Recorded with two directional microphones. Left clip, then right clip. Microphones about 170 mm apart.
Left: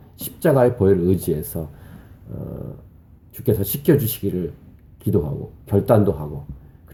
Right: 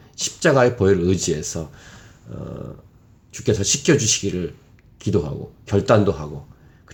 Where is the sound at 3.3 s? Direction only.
Centre (ahead or behind).